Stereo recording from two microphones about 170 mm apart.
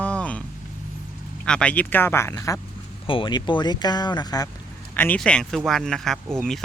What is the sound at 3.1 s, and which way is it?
Speech, 30° left (ahead or behind).